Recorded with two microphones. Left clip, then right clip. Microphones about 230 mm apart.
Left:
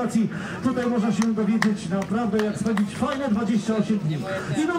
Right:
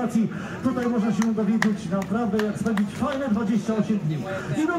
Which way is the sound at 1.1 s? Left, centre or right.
Centre.